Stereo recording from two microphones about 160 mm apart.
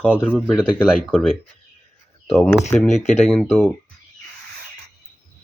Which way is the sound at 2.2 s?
5° left (ahead or behind).